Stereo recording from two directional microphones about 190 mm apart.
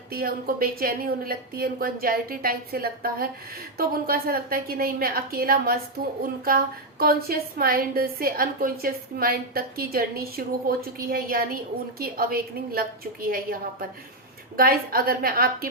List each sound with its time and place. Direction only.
0.1 s a woman's voice: 50° right (ahead or behind)